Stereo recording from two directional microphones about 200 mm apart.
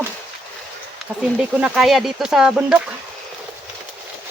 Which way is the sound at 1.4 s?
5° right (ahead or behind).